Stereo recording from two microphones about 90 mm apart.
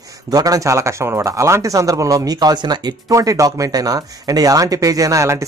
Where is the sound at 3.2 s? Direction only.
40° right (ahead or behind).